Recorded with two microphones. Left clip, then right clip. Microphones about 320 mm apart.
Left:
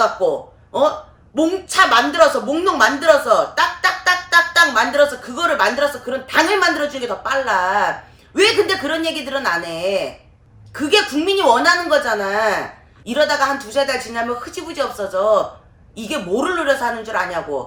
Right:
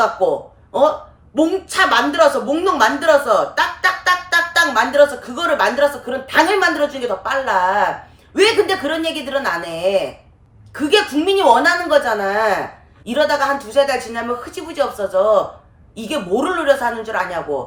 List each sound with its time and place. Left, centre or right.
0.0 s a woman's voice: centre